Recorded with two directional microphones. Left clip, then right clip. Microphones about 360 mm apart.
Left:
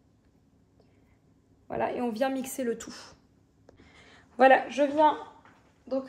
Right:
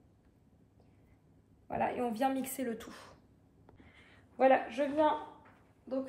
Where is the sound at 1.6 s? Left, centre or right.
Left.